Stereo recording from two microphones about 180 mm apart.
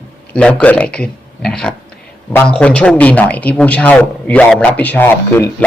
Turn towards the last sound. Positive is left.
turn(degrees=10)  # may be behind; listen again after turning